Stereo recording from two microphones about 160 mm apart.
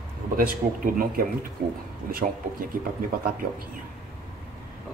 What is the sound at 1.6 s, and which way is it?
Speech, 75° right (ahead or behind).